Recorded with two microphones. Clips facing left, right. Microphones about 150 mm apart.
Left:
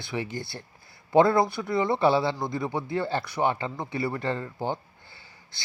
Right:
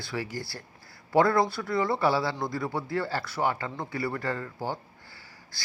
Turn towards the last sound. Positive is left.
turn(degrees=20)  # may be behind; listen again after turning